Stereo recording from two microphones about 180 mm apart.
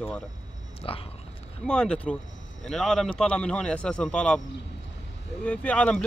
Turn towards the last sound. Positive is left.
turn(degrees=5)  # may be behind; listen again after turning